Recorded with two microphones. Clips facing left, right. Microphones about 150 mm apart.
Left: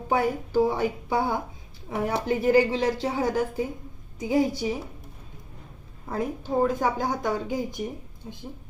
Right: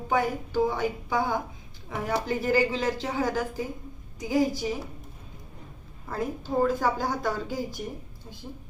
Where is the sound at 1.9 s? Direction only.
25° left (ahead or behind).